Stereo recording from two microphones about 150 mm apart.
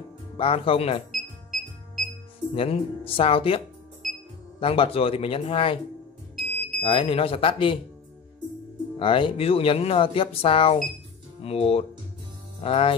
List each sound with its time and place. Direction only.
0.4 s speech: 35° left (ahead or behind)
1.1 s music: centre (ahead or behind)
2.5 s speech: 40° left (ahead or behind)
6.8 s speech: 35° left (ahead or behind)
8.9 s speech: 35° left (ahead or behind)